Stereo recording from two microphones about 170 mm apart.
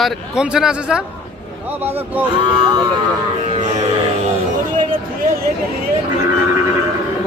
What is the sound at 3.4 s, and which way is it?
Music, 45° right (ahead or behind).